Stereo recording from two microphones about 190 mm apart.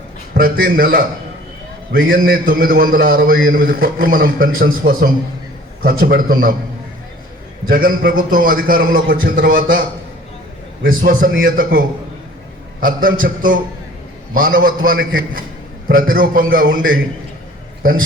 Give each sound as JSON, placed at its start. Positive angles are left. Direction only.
{"t": 0.3, "sound": "a man's voice", "side_deg": -50}
{"t": 7.7, "sound": "a man's voice", "side_deg": -50}
{"t": 10.8, "sound": "a man's voice", "side_deg": -45}
{"t": 12.8, "sound": "a man's voice", "side_deg": -45}